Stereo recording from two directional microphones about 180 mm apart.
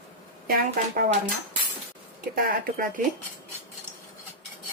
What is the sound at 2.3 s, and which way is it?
Speech, 50° right (ahead or behind).